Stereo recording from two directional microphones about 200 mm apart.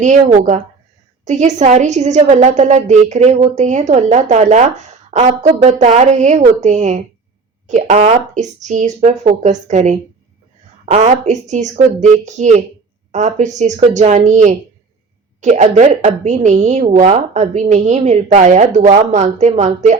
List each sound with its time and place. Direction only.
0.0 s a woman's voice: 35° right (ahead or behind)
10.9 s a woman's voice: 35° right (ahead or behind)